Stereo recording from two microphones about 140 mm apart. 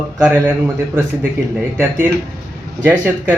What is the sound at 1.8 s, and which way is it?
Speech, 15° right (ahead or behind).